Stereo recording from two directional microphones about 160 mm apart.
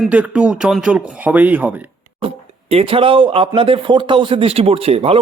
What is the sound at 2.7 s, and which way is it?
A man's voice, 35° right (ahead or behind).